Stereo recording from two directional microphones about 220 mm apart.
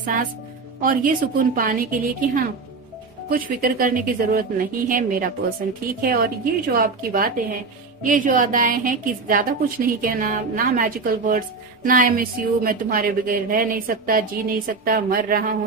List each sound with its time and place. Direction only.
0.0 s a woman's voice: 40° right (ahead or behind)